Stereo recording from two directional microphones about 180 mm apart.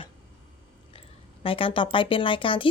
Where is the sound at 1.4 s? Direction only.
30° left (ahead or behind).